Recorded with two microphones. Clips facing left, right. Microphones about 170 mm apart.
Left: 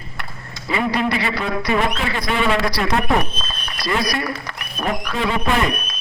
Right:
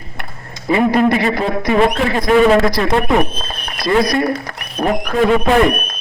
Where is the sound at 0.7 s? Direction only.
45° right (ahead or behind).